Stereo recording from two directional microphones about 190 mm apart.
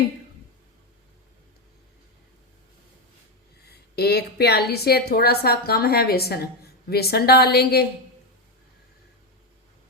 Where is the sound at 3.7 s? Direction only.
55° left (ahead or behind).